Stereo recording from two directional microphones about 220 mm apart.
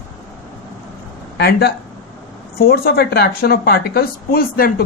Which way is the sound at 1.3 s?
45° left (ahead or behind).